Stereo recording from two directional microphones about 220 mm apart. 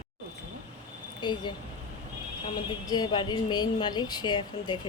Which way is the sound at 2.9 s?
20° left (ahead or behind).